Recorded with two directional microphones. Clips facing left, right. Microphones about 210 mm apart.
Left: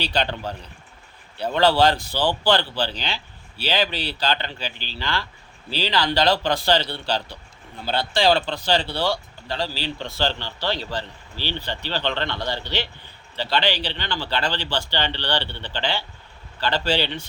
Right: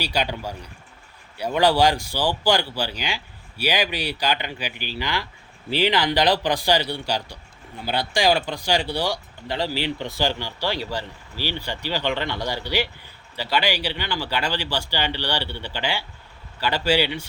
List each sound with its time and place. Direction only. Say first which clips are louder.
0.0 s speech: left 1 dB; 10° right (ahead or behind)